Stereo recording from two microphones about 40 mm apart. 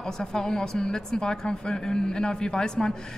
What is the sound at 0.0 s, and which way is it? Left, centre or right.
A man's voice, centre.